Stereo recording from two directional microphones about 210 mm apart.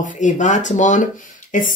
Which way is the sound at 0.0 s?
35° left (ahead or behind).